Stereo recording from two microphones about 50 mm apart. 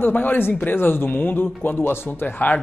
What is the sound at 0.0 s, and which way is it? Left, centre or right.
Speech, left.